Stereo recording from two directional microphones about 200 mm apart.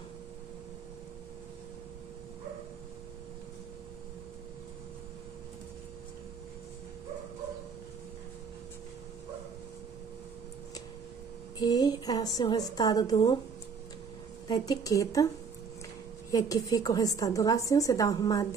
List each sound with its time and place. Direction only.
11.6 s a woman's voice: 20° left (ahead or behind)
14.5 s a woman's voice: 20° left (ahead or behind)
16.3 s a woman's voice: 15° left (ahead or behind)